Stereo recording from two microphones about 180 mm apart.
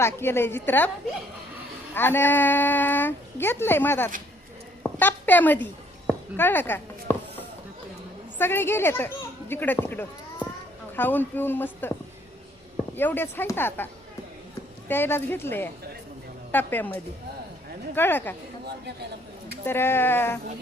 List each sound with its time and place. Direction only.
0.0 s speech: 15° left (ahead or behind)
1.9 s speech: 10° left (ahead or behind)
4.8 s a sound: 10° left (ahead or behind)
8.4 s speech: 10° left (ahead or behind)
13.0 s speech: 10° left (ahead or behind)
19.6 s speech: 15° left (ahead or behind)